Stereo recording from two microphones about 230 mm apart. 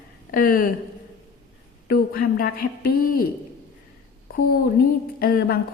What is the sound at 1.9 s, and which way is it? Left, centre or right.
A woman's voice, left.